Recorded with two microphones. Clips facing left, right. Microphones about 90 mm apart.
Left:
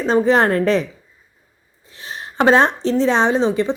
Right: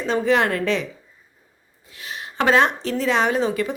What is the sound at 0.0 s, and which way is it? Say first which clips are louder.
Speech: left 4 dB; 35° left (ahead or behind).